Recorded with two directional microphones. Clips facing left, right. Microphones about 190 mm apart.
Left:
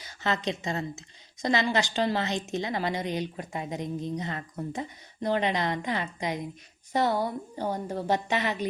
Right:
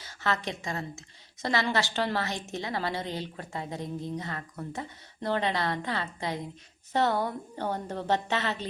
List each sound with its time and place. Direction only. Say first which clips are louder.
0.0 s a woman's voice: left 2 dB; 15° left (ahead or behind)